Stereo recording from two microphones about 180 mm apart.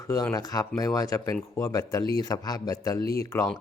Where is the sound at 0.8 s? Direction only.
20° left (ahead or behind).